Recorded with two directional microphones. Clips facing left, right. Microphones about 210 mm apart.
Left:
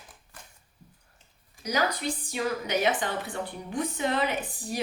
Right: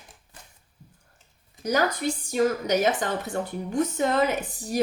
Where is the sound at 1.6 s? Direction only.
45° right (ahead or behind).